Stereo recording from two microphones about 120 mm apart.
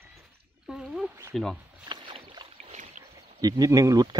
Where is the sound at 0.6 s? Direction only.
5° right (ahead or behind).